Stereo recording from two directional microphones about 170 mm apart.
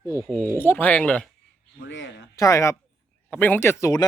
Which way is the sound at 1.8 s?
90° left.